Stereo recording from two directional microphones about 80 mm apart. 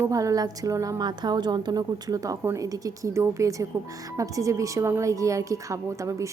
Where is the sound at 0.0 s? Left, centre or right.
Right.